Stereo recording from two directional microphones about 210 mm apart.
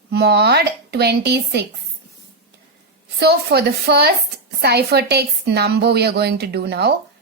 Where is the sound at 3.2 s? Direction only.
50° right (ahead or behind).